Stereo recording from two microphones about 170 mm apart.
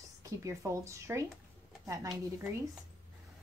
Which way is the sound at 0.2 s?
15° right (ahead or behind).